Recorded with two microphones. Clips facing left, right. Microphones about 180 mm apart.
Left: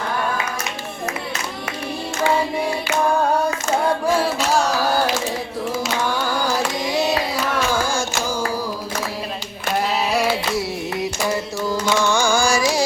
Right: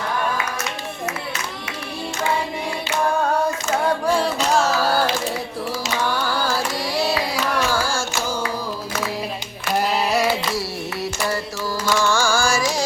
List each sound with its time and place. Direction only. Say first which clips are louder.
4.0 s music: left 1 dB; 5° left (ahead or behind)
6.2 s carnatic music: left 1 dB; 20° left (ahead or behind)
7.7 s music: left 2 dB; 20° left (ahead or behind)
9.8 s a sound: right 1 dB; centre (ahead or behind)
11.3 s music: left 3 dB; 20° left (ahead or behind)